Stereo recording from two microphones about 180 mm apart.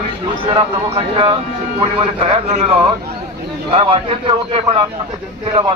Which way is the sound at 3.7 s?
30° right (ahead or behind).